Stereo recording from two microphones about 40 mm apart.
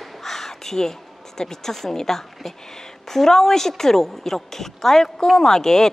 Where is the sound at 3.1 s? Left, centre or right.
Centre.